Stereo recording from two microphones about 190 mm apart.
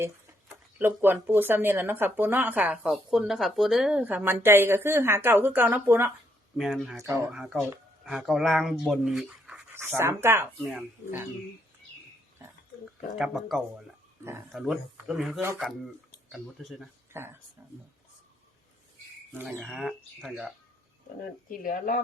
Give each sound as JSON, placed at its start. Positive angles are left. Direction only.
{"t": 0.0, "sound": "speech", "side_deg": -10}
{"t": 7.0, "sound": "speech", "side_deg": -15}
{"t": 7.3, "sound": "speech", "side_deg": -5}
{"t": 10.6, "sound": "speech", "side_deg": 0}
{"t": 13.1, "sound": "speech", "side_deg": 0}
{"t": 15.4, "sound": "speech", "side_deg": -10}
{"t": 16.3, "sound": "speech", "side_deg": 0}
{"t": 17.1, "sound": "speech", "side_deg": -10}
{"t": 19.3, "sound": "speech", "side_deg": -10}
{"t": 21.6, "sound": "speech", "side_deg": 45}